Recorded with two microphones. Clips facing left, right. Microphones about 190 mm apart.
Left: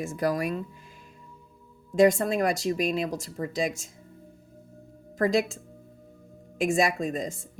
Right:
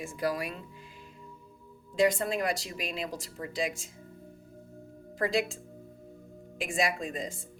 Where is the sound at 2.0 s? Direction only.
45° left (ahead or behind).